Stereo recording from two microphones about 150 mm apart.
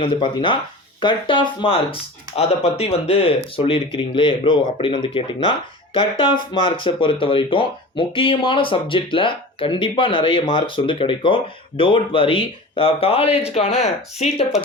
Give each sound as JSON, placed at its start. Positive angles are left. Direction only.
{"t": 0.0, "sound": "speech", "side_deg": 35}